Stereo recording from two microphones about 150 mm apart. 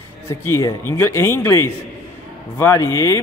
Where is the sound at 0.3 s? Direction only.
20° left (ahead or behind).